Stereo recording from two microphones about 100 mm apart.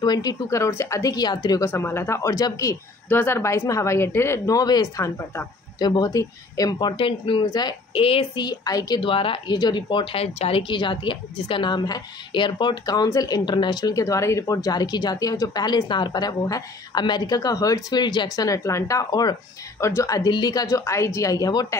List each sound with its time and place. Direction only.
0.0 s a woman's voice: 40° left (ahead or behind)
1.7 s speech: 20° left (ahead or behind)
5.8 s speech: 45° left (ahead or behind)
6.0 s speech: 35° left (ahead or behind); by 8.3 s 65° left (ahead or behind)
8.4 s speech: 40° left (ahead or behind)
9.0 s speech: 60° left (ahead or behind)
9.6 s speech: 45° left (ahead or behind); by 10.6 s 80° left
10.7 s a woman's voice: 50° left (ahead or behind); by 20.2 s 35° left (ahead or behind)
20.2 s speech: 45° left (ahead or behind)
20.6 s a woman's voice: 30° left (ahead or behind)